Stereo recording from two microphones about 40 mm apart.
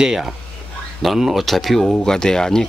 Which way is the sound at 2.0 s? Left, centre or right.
Centre.